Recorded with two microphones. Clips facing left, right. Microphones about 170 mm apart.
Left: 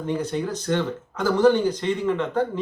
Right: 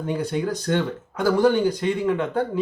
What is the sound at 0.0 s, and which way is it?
Speech, 10° right (ahead or behind).